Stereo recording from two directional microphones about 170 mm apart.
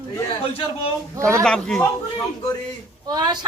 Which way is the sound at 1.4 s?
5° left (ahead or behind).